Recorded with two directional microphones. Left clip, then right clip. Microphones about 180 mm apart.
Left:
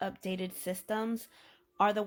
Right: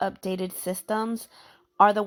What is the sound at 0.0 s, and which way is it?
Speech, 25° right (ahead or behind).